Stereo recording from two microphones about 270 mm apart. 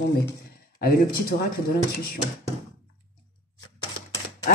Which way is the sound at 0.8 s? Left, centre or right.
Left.